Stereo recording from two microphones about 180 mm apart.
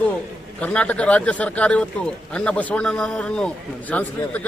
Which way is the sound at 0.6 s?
5° left (ahead or behind).